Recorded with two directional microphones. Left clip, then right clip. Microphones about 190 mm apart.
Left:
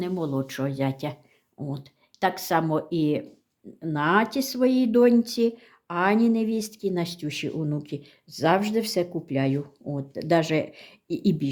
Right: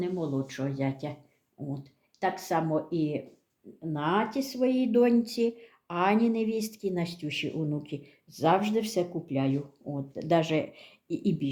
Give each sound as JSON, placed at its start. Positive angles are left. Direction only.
{"t": 0.0, "sound": "speech", "side_deg": 30}